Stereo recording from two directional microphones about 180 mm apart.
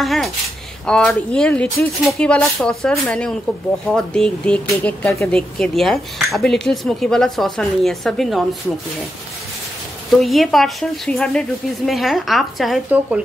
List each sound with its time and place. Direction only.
0.0 s a sound: centre (ahead or behind)
0.8 s speech: 5° left (ahead or behind)
10.2 s speech: centre (ahead or behind)